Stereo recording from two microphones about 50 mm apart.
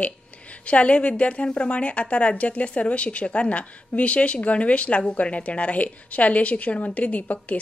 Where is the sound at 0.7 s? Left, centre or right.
Left.